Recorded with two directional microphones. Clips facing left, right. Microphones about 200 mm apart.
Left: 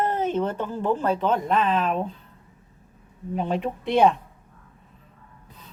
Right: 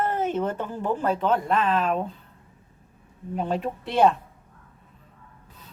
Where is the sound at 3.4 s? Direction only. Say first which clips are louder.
Left 1 dB; centre (ahead or behind).